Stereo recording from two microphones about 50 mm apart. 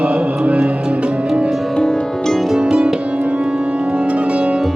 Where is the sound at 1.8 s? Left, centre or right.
Centre.